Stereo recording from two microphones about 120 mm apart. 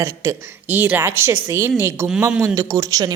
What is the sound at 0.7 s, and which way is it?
A woman's voice, 15° right (ahead or behind).